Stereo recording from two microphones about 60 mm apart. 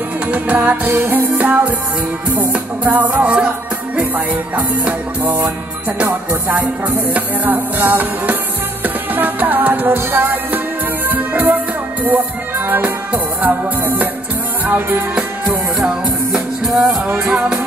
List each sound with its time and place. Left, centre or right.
0.3 s music: right
0.8 s music: right
7.2 s music: right
15.1 s music: centre